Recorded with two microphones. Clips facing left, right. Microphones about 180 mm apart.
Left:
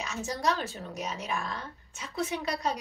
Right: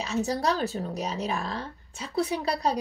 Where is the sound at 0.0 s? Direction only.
35° right (ahead or behind).